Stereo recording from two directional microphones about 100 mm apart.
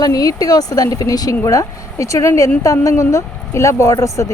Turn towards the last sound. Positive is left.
turn(degrees=30)  # may be behind; listen again after turning